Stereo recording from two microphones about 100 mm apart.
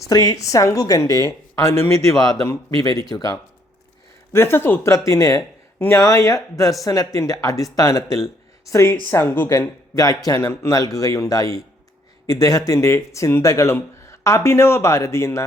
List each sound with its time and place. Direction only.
0.0 s a woman's voice: 35° left (ahead or behind)
4.3 s a woman's voice: 25° left (ahead or behind)